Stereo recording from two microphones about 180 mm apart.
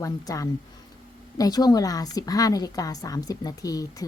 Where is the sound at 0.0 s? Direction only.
20° left (ahead or behind).